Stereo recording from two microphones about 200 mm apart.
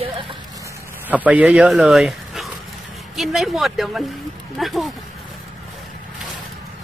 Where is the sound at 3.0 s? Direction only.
Centre (ahead or behind).